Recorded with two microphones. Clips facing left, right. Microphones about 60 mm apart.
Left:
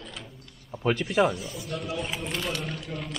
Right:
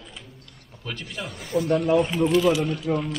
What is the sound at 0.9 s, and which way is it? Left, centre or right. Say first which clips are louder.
Speech: left 11 dB; left.